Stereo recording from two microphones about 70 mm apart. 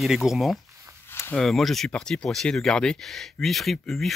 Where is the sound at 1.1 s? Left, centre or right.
Left.